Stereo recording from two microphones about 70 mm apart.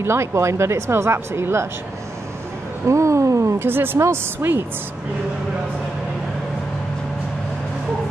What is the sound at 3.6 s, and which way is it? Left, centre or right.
Speech, right.